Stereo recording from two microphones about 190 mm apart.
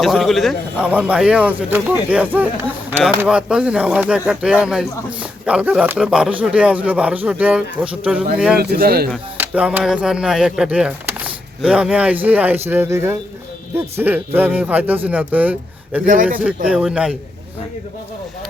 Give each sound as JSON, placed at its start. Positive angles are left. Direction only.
{"t": 0.0, "sound": "speech", "side_deg": 0}
{"t": 8.5, "sound": "speech", "side_deg": -55}
{"t": 9.4, "sound": "speech", "side_deg": -10}